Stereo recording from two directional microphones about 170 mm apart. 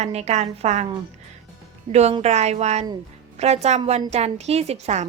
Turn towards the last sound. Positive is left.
turn(degrees=-40)  # may be behind; listen again after turning